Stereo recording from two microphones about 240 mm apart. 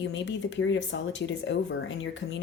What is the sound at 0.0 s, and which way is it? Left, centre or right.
A woman's voice, left.